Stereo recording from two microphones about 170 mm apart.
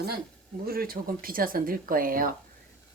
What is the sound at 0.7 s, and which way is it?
Speech, 60° right (ahead or behind).